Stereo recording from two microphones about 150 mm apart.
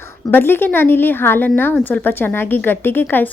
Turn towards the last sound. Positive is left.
turn(degrees=15)  # may be behind; listen again after turning